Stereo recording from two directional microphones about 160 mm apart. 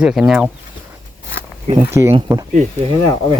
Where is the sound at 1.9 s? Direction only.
15° right (ahead or behind).